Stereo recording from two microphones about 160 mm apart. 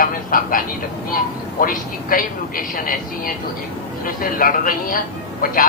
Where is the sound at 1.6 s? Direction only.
60° left (ahead or behind).